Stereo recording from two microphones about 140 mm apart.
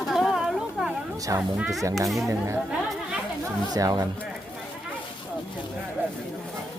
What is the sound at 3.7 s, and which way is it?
Speech, 25° right (ahead or behind).